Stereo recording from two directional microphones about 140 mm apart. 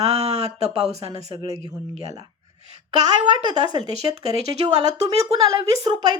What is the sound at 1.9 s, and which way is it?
Speech, 45° right (ahead or behind).